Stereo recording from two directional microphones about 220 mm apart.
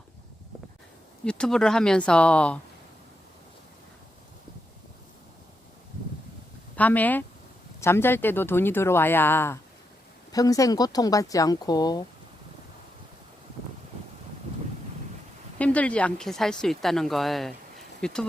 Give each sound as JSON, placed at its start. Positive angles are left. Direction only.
{"t": 1.2, "sound": "speech", "side_deg": 5}
{"t": 6.7, "sound": "speech", "side_deg": 5}
{"t": 15.5, "sound": "speech", "side_deg": 5}